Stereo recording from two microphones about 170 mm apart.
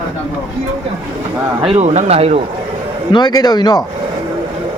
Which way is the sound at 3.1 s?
25° left (ahead or behind).